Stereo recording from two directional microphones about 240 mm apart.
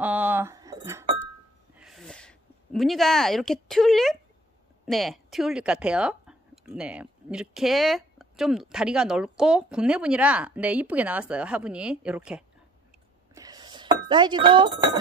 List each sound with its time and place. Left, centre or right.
0.0 s chink: centre
1.8 s a sound: centre
4.8 s speech: centre
13.3 s chink: centre